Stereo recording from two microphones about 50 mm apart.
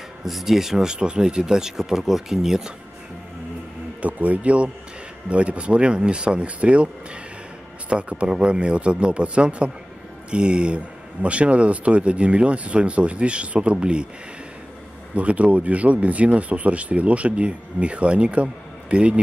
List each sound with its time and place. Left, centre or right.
0.2 s speech: centre
4.0 s speech: right
7.9 s speech: right
15.1 s speech: right